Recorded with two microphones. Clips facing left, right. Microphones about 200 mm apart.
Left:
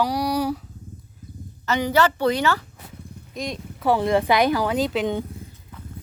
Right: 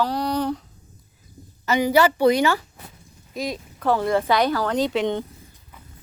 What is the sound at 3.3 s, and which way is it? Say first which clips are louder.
Speech: right 2 dB; centre (ahead or behind).